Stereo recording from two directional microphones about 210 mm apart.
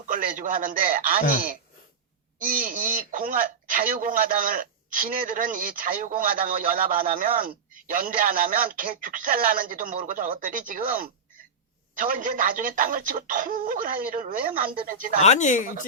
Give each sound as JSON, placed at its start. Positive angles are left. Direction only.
{"t": 0.1, "sound": "speech", "side_deg": -40}
{"t": 2.4, "sound": "speech", "side_deg": -45}
{"t": 15.2, "sound": "speech", "side_deg": 35}